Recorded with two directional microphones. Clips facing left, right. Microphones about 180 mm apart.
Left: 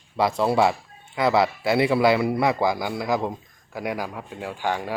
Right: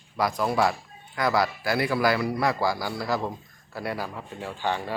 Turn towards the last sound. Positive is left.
turn(degrees=10)  # may be behind; listen again after turning